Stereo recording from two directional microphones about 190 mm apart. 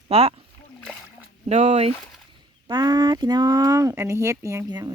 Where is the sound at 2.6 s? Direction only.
20° right (ahead or behind).